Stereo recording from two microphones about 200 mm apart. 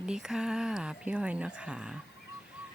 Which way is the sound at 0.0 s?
5° right (ahead or behind).